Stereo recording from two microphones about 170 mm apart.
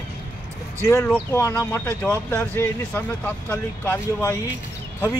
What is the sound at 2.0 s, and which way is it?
Speech, 10° left (ahead or behind).